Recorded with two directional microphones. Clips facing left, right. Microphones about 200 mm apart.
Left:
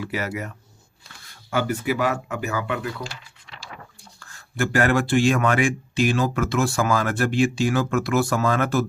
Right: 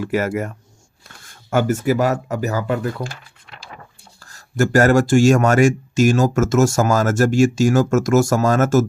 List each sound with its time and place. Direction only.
0.0 s speech: 50° right (ahead or behind)
4.2 s speech: 40° right (ahead or behind)